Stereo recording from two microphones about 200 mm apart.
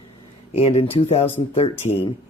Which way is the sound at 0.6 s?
30° left (ahead or behind).